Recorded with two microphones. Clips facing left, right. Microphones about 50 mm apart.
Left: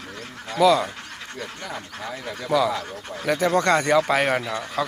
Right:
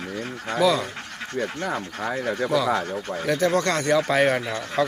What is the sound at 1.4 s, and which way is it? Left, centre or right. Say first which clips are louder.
Speech: right 6 dB; right.